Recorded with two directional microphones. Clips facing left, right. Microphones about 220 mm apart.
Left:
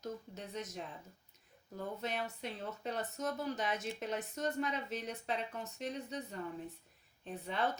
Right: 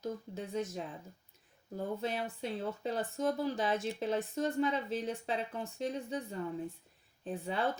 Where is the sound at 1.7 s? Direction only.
30° right (ahead or behind).